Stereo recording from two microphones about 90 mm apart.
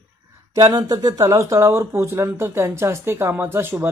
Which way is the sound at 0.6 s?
35° right (ahead or behind).